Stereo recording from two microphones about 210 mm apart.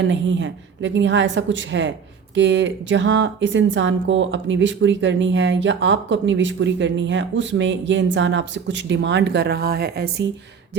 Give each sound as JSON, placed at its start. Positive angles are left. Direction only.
{"t": 0.0, "sound": "speech", "side_deg": -60}